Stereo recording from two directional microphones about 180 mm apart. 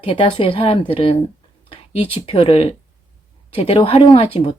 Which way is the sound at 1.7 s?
30° left (ahead or behind).